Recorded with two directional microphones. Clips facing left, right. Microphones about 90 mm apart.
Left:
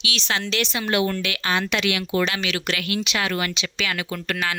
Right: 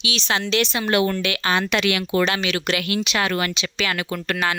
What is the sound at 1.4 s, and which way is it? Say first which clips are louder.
Speech: right 2 dB; 45° right (ahead or behind).